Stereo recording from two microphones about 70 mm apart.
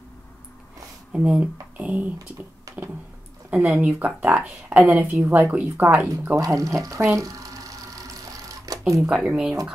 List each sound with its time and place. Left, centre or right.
1.1 s a woman's voice: centre
3.7 s a woman's voice: right
6.3 s speech: right
7.2 s cash register: right
9.1 s speech: centre